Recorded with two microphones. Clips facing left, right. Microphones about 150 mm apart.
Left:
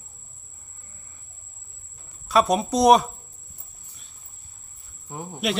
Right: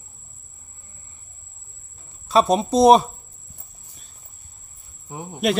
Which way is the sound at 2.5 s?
25° right (ahead or behind).